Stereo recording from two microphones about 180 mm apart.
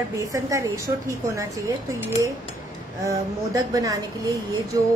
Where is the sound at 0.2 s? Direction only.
20° right (ahead or behind).